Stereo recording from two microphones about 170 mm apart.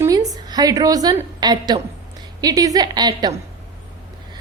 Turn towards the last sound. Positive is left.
turn(degrees=-25)  # may be behind; listen again after turning